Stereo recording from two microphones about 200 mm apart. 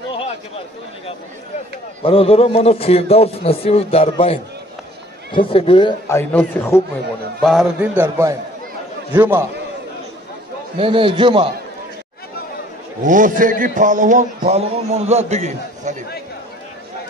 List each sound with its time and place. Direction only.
2.0 s a man's voice: 30° left (ahead or behind); by 6.8 s 15° left (ahead or behind)
7.4 s a man's voice: 5° right (ahead or behind)
10.8 s a man's voice: 25° right (ahead or behind)
13.0 s a man's voice: 40° right (ahead or behind)